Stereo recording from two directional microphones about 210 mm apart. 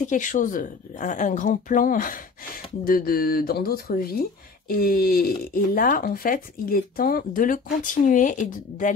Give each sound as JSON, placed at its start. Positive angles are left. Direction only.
{"t": 0.0, "sound": "speech", "side_deg": 35}